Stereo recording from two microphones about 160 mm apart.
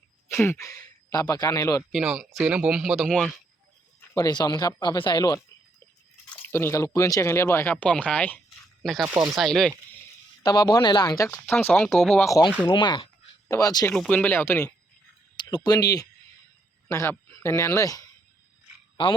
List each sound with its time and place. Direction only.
0.4 s speech: 20° left (ahead or behind)
1.9 s speech: 5° right (ahead or behind)
4.1 s speech: 25° left (ahead or behind)
6.4 s speech: 15° left (ahead or behind)
8.4 s a sound: centre (ahead or behind)
9.0 s speech: 15° right (ahead or behind)
9.4 s speech: centre (ahead or behind)
10.4 s speech: 25° left (ahead or behind)
11.4 s speech: 10° left (ahead or behind)
12.6 s speech: 30° left (ahead or behind)
13.9 s speech: 5° left (ahead or behind)
15.4 s speech: 25° left (ahead or behind)